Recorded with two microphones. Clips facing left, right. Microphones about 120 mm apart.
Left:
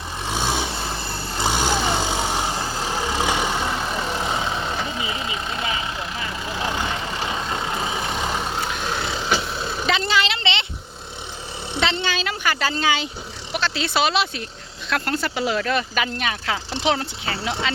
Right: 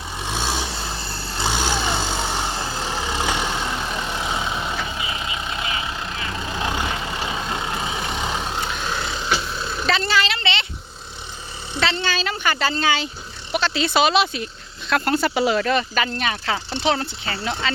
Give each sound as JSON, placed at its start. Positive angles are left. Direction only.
{"t": 0.8, "sound": "vehicle", "side_deg": 20}
{"t": 1.6, "sound": "vehicle", "side_deg": 10}
{"t": 7.5, "sound": "vehicle", "side_deg": 5}
{"t": 9.6, "sound": "vehicle", "side_deg": 15}
{"t": 11.7, "sound": "a sound", "side_deg": 20}
{"t": 12.2, "sound": "speech", "side_deg": 5}
{"t": 13.5, "sound": "speech", "side_deg": 0}